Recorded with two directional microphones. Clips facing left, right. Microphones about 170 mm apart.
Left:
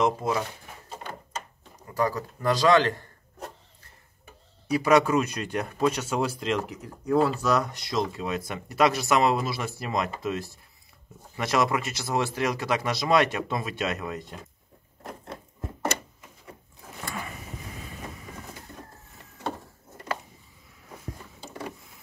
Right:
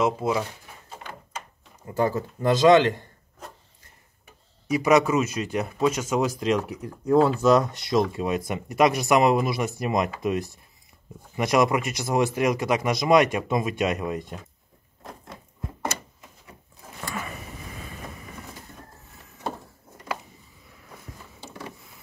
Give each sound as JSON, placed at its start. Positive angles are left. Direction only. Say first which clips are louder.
{"t": 0.0, "sound": "speech", "louder": "right 1 dB", "side_deg": -10}
{"t": 2.0, "sound": "speech", "louder": "right 3 dB", "side_deg": -25}
{"t": 4.6, "sound": "speech", "louder": "right 1 dB", "side_deg": -10}
{"t": 7.1, "sound": "speech", "louder": "right 5 dB", "side_deg": -25}